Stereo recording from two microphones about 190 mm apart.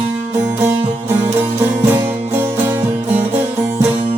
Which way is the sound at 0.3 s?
15° right (ahead or behind).